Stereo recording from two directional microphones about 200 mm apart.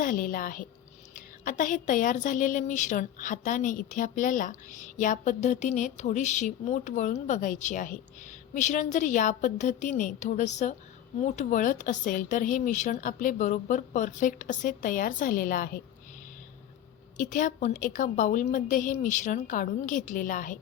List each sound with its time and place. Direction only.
0.0 s a woman's voice: 45° left (ahead or behind)
17.2 s a woman's voice: 40° left (ahead or behind)